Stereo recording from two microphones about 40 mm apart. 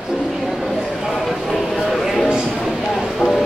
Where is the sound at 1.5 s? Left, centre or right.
Centre.